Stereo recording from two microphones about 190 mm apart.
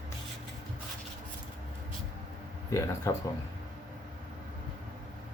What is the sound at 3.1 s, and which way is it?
Speech, 15° left (ahead or behind).